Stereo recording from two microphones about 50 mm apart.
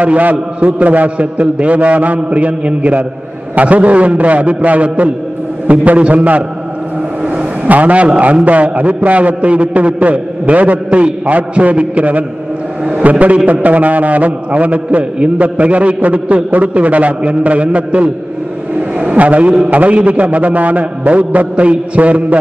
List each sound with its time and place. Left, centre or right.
0.0 s a man's voice: right
7.6 s a man's voice: right